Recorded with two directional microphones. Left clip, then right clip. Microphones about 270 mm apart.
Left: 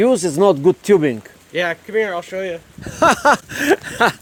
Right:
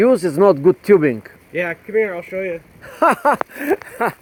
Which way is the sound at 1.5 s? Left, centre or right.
Centre.